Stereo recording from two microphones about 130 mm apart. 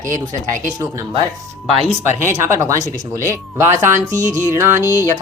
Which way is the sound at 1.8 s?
50° left (ahead or behind).